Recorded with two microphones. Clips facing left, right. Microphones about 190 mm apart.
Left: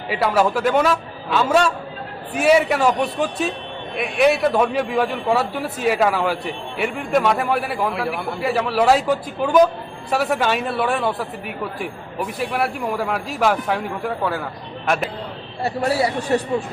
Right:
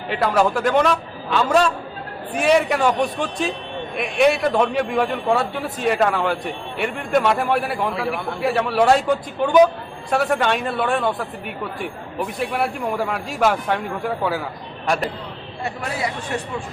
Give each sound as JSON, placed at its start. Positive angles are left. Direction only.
{"t": 0.1, "sound": "a man's voice", "side_deg": 5}
{"t": 15.6, "sound": "speech", "side_deg": 35}